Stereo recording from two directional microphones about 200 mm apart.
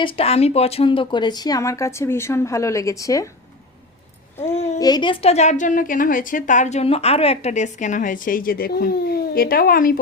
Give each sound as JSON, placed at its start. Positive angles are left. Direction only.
{"t": 0.0, "sound": "speech", "side_deg": 25}
{"t": 4.8, "sound": "a woman's voice", "side_deg": 20}